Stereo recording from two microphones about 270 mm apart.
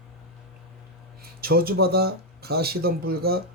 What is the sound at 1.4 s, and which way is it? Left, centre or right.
A man's voice, right.